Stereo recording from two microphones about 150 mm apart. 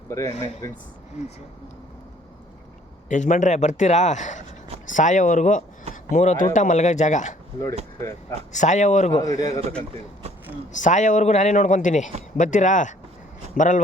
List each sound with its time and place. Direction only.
0.1 s speech: 20° left (ahead or behind)
3.1 s a man's voice: 55° left (ahead or behind)
8.5 s speech: 55° left (ahead or behind)
9.2 s speech: 25° left (ahead or behind)
10.8 s a man's voice: 55° left (ahead or behind)